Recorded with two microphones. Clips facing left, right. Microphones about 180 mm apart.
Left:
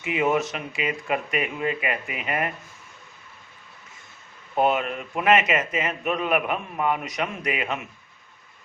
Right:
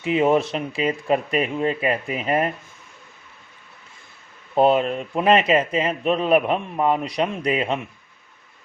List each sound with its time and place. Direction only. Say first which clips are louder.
0.0 s a man's voice: right 5 dB; 30° right (ahead or behind)
4.5 s a man's voice: right 5 dB; 30° right (ahead or behind)